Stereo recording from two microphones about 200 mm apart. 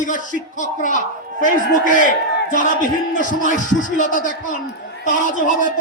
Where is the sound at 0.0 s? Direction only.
40° left (ahead or behind).